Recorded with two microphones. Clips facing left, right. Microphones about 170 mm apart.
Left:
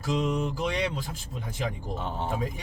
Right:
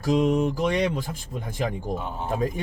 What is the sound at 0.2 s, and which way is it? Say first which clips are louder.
Speech: right 6 dB; 50° right (ahead or behind).